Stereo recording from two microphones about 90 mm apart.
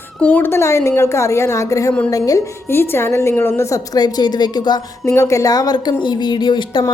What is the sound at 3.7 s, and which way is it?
A woman's voice, 50° left (ahead or behind).